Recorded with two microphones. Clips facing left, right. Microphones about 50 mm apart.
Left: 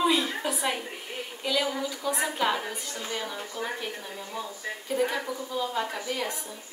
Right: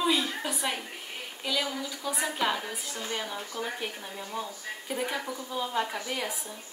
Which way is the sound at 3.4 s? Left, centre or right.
Centre.